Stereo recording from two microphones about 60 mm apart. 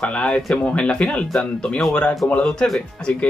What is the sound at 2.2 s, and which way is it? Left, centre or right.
Speech, centre.